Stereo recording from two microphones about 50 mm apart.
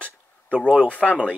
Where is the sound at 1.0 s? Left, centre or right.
Centre.